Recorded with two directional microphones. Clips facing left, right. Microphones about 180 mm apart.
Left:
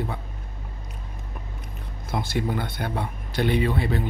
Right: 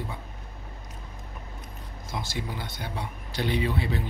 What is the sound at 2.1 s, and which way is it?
Speech, 55° left (ahead or behind).